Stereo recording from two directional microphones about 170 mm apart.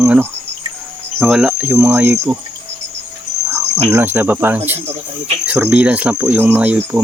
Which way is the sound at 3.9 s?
15° right (ahead or behind).